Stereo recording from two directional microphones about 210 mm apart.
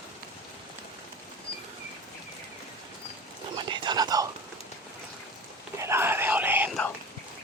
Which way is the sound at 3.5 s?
20° right (ahead or behind).